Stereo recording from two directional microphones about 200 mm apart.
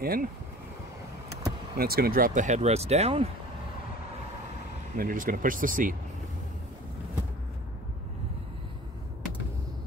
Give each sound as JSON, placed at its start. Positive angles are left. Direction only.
{"t": 0.0, "sound": "speech", "side_deg": -50}
{"t": 1.8, "sound": "speech", "side_deg": -50}
{"t": 4.9, "sound": "speech", "side_deg": -45}